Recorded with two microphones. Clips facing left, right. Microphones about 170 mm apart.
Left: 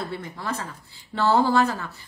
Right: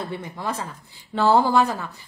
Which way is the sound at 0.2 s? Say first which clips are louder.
Right 2 dB; 15° right (ahead or behind).